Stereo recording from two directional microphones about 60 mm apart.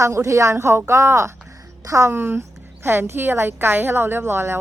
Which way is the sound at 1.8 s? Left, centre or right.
Right.